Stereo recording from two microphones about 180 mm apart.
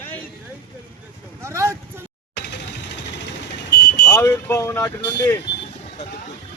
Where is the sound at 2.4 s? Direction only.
70° left (ahead or behind).